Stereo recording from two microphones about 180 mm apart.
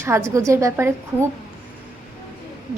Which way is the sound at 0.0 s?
15° right (ahead or behind).